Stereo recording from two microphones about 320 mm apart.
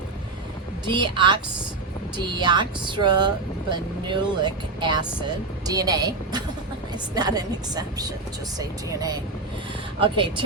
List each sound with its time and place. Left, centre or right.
0.9 s speech: centre